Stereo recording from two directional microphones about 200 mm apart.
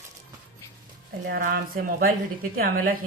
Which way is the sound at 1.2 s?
50° right (ahead or behind).